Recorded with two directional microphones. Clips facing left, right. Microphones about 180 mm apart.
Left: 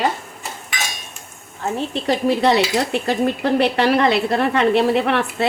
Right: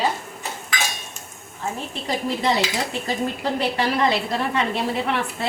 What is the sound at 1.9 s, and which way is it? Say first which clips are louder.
A woman's voice: left 8 dB; 70° left (ahead or behind).